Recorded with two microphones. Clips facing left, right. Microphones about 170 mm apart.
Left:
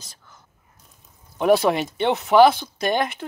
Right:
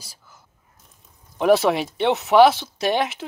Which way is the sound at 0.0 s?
10° right (ahead or behind).